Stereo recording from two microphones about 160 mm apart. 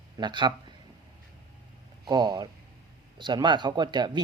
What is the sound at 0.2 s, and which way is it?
Speech, 30° right (ahead or behind).